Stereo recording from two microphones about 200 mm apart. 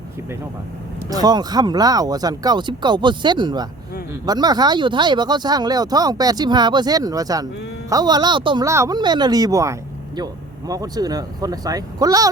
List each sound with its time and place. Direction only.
1.1 s speech: 20° right (ahead or behind)